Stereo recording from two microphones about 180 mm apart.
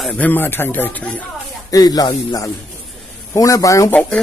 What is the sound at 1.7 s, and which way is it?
Speech, 20° left (ahead or behind).